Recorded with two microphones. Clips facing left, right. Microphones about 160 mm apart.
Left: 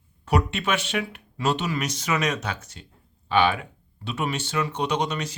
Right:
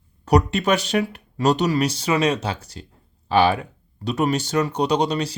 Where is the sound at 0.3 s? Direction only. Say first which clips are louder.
Right 6 dB; 40° right (ahead or behind).